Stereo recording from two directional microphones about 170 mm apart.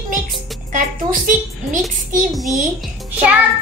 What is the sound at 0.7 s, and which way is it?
A woman's voice, 55° right (ahead or behind).